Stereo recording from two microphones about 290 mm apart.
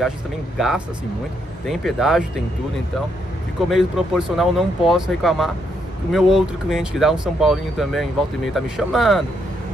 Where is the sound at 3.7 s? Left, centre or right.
Centre.